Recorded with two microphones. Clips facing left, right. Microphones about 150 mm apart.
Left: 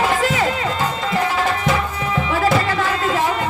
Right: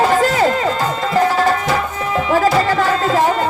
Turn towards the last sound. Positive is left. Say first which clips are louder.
# right 4 dB
turn(degrees=-40)  # may be behind; listen again after turning